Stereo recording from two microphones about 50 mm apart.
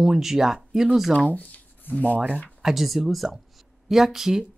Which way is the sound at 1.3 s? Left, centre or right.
Left.